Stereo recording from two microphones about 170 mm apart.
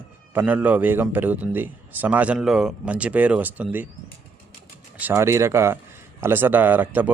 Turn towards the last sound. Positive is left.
turn(degrees=-10)  # may be behind; listen again after turning